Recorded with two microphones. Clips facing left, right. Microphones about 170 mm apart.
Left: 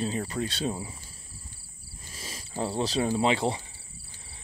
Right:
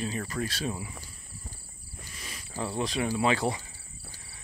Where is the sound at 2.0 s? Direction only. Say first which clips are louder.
Left 3 dB; 35° left (ahead or behind).